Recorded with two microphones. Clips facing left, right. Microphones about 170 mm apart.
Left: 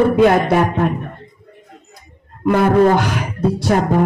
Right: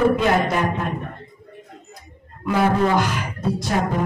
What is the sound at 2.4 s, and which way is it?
Music, 60° left (ahead or behind).